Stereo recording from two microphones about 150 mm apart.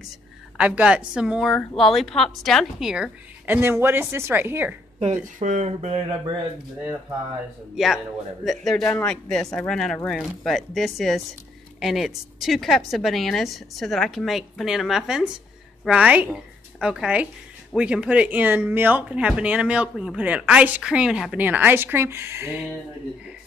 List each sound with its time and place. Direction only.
0.6 s speech: 5° right (ahead or behind)
5.0 s speech: 50° right (ahead or behind)
7.7 s a woman's voice: centre (ahead or behind)